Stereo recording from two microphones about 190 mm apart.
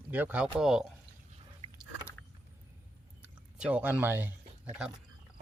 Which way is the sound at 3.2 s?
5° right (ahead or behind).